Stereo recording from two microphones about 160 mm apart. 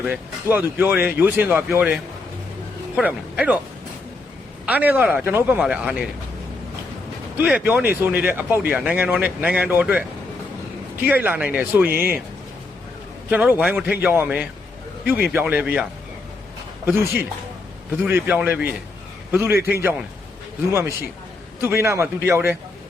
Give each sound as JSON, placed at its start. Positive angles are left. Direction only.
{"t": 0.0, "sound": "speech", "side_deg": -10}
{"t": 4.6, "sound": "speech", "side_deg": -10}
{"t": 7.4, "sound": "speech", "side_deg": -10}
{"t": 11.0, "sound": "speech", "side_deg": -10}
{"t": 13.3, "sound": "a man's voice", "side_deg": -10}
{"t": 21.6, "sound": "speech", "side_deg": -15}